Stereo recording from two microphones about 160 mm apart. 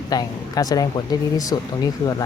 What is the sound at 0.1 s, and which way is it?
Speech, 25° left (ahead or behind).